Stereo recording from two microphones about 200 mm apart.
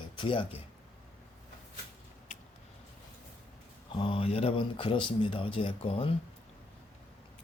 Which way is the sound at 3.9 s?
25° left (ahead or behind).